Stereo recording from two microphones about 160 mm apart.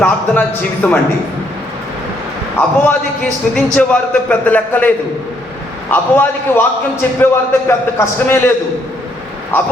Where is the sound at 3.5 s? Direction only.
10° left (ahead or behind).